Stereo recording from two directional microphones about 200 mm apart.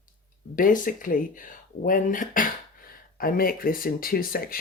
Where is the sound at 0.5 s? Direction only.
45° left (ahead or behind).